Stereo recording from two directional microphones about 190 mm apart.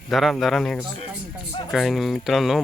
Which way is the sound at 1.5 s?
25° left (ahead or behind).